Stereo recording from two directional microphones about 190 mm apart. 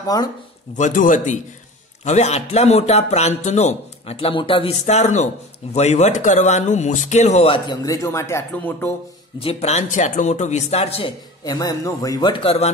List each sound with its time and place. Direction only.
0.1 s speech: 20° left (ahead or behind)
0.7 s a man's voice: 40° left (ahead or behind); by 8.9 s 15° left (ahead or behind)
9.4 s a man's voice: 30° left (ahead or behind)